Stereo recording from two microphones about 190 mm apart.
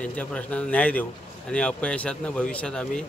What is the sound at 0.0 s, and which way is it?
A man's voice, 5° left (ahead or behind).